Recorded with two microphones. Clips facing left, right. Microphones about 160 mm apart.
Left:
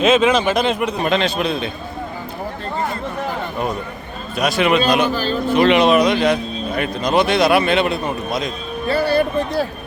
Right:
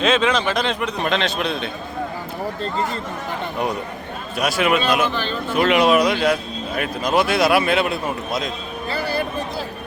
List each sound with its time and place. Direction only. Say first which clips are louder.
0.0 s a man's voice: left 4 dB; 10° left (ahead or behind)
4.4 s a man's voice: left 3 dB; 5° right (ahead or behind)
8.9 s music: left 8 dB; 60° left (ahead or behind)